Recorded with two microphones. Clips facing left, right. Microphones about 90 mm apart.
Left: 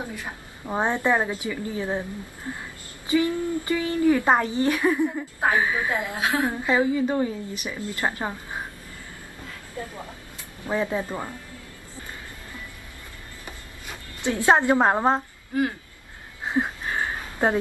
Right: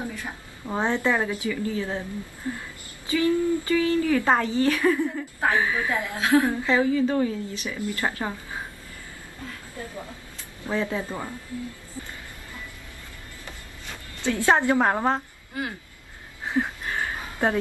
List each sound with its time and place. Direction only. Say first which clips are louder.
0.1 s speech: even; 15° left (ahead or behind)
10.7 s speech: left 1 dB; 15° left (ahead or behind)
13.8 s speech: even; 20° left (ahead or behind)
16.4 s a sound: left 1 dB; 20° left (ahead or behind)